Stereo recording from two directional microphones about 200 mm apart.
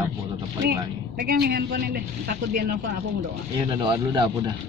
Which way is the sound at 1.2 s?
50° right (ahead or behind).